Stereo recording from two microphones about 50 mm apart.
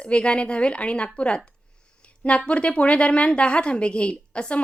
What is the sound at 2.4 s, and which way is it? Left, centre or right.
A woman's voice, left.